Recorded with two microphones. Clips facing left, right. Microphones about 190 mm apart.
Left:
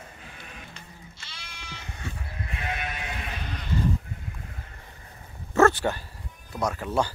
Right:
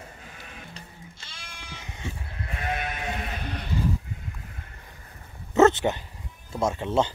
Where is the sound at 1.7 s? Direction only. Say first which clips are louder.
Right 1 dB; 15° right (ahead or behind).